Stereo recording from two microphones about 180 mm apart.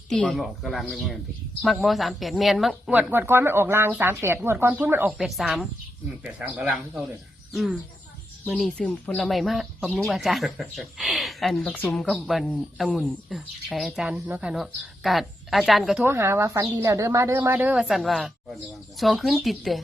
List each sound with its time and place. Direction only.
0.1 s a woman's voice: centre (ahead or behind)
16.0 s a woman's voice: 15° right (ahead or behind)